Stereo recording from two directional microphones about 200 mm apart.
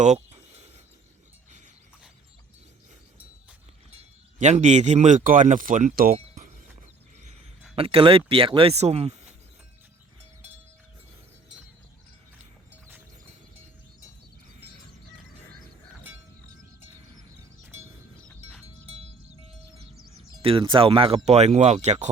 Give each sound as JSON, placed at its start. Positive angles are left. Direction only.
{"t": 0.0, "sound": "a sound", "side_deg": -35}
{"t": 3.9, "sound": "speech", "side_deg": -35}
{"t": 7.8, "sound": "speech", "side_deg": -25}
{"t": 20.4, "sound": "speech", "side_deg": -25}